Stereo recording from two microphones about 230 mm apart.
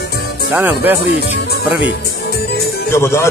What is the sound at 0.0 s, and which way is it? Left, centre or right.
Music, left.